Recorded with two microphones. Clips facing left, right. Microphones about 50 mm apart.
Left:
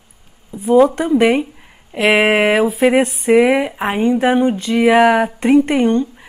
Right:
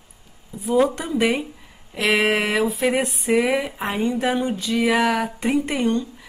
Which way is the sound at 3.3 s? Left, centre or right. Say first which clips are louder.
Left 8 dB; left.